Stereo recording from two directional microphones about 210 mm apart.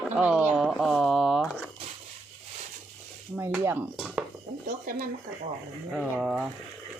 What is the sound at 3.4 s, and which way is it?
Speech, 10° right (ahead or behind).